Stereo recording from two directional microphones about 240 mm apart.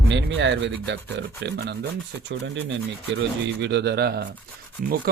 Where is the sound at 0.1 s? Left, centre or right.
Right.